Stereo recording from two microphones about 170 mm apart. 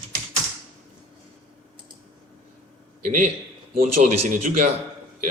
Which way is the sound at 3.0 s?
45° right (ahead or behind).